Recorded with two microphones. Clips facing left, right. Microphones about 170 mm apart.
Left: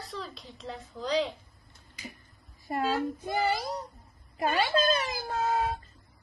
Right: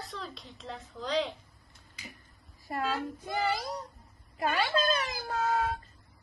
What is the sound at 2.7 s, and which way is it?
Speech, 30° left (ahead or behind).